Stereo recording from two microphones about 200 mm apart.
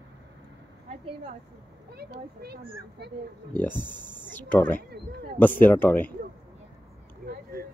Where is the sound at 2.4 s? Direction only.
55° right (ahead or behind).